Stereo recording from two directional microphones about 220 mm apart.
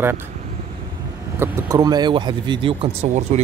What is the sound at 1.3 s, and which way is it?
Speech, 10° right (ahead or behind).